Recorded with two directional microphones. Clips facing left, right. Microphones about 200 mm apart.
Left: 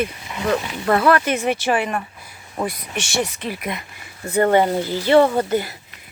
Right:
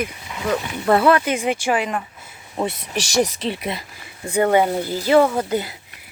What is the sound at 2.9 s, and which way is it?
Speech, 35° right (ahead or behind).